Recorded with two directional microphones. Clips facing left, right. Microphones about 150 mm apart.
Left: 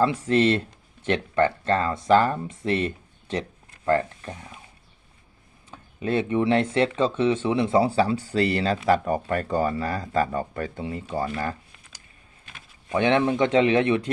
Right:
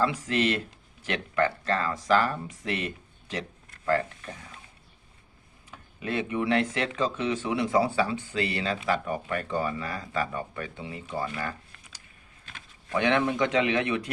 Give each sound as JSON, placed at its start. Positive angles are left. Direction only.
{"t": 0.0, "sound": "speech", "side_deg": 30}
{"t": 5.7, "sound": "speech", "side_deg": 30}
{"t": 12.9, "sound": "speech", "side_deg": 25}